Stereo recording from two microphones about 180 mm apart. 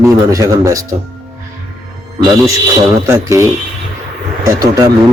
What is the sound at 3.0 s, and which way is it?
A man's voice, 15° right (ahead or behind).